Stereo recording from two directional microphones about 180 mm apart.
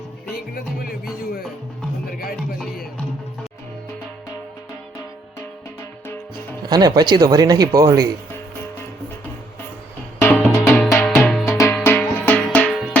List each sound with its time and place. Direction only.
0.5 s music: 55° left (ahead or behind)
6.6 s speech: 20° right (ahead or behind)
10.2 s music: 15° left (ahead or behind)
11.5 s music: 15° left (ahead or behind)